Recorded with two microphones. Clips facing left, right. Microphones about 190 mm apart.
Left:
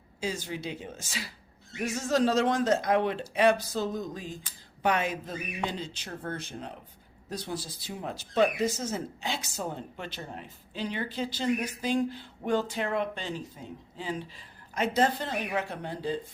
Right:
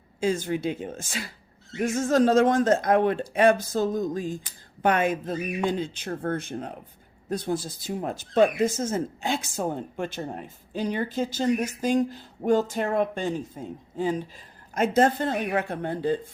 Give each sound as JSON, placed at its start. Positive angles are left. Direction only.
{"t": 0.2, "sound": "speech", "side_deg": -50}